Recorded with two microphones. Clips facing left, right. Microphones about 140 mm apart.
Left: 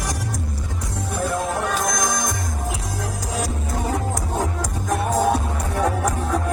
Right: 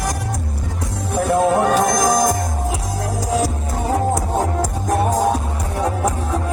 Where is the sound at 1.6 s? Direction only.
45° right (ahead or behind).